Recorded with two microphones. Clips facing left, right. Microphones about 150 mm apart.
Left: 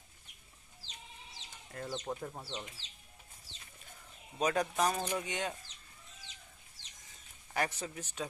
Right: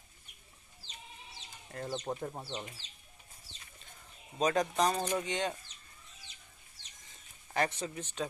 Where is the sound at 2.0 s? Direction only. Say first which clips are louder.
Right 2 dB; 15° right (ahead or behind).